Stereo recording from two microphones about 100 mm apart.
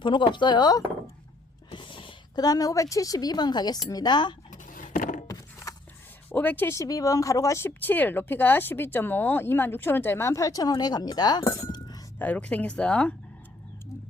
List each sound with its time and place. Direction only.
0.0 s speech: 55° left (ahead or behind)
1.7 s a sound: 60° left (ahead or behind)
2.3 s a woman's voice: 40° left (ahead or behind)
5.3 s a sound: 35° left (ahead or behind)
6.3 s speech: 20° left (ahead or behind)
6.7 s speech: 35° left (ahead or behind)
12.2 s speech: 15° left (ahead or behind)